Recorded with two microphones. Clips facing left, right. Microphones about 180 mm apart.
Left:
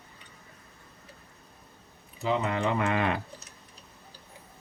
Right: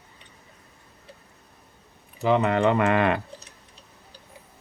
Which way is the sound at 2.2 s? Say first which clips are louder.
Right 7 dB; 65° right (ahead or behind).